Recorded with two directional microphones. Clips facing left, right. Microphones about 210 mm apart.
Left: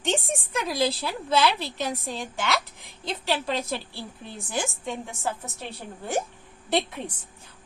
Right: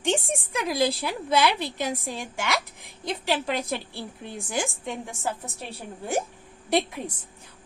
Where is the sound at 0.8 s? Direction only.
15° right (ahead or behind).